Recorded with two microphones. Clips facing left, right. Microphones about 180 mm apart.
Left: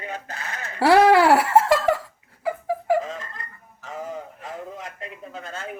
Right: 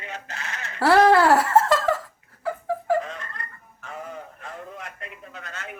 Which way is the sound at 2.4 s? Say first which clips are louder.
Left 2 dB; 10° left (ahead or behind).